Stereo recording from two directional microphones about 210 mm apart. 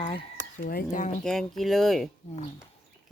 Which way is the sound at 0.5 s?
40° left (ahead or behind).